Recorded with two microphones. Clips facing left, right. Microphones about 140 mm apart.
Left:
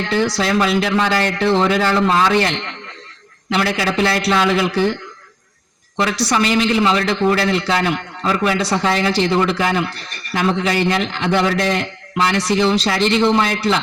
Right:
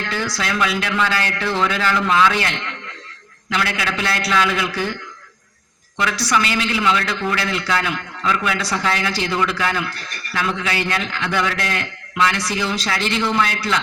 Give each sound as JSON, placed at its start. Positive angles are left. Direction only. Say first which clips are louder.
{"t": 0.0, "sound": "a man's voice", "louder": "left 7 dB", "side_deg": 25}
{"t": 6.0, "sound": "a man's voice", "louder": "left 3 dB", "side_deg": 30}